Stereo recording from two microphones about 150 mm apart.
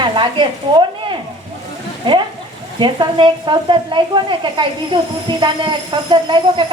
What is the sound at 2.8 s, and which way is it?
Speech, 30° right (ahead or behind).